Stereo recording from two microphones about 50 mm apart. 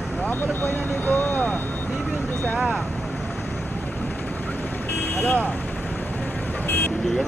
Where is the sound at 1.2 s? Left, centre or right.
Centre.